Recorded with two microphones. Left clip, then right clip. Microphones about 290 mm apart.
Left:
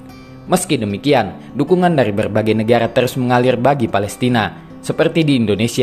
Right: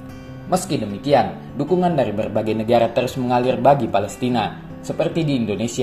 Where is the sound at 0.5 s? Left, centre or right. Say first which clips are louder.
Left 5 dB; left.